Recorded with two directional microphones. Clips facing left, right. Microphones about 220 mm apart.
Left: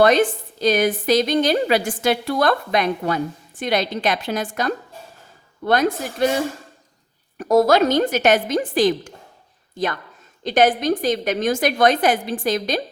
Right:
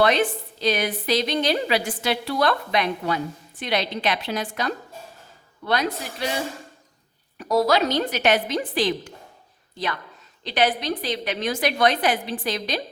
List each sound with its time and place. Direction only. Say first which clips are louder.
0.0 s a woman's voice: left 5 dB; 45° left (ahead or behind)
7.3 s a woman's voice: left 5 dB; 50° left (ahead or behind)